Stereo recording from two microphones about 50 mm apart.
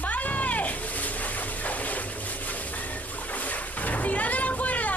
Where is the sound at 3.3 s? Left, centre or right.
Left.